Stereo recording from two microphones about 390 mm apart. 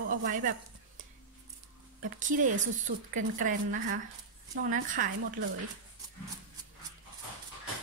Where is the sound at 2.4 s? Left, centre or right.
Centre.